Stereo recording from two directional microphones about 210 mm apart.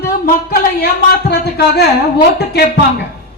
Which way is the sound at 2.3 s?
50° left (ahead or behind).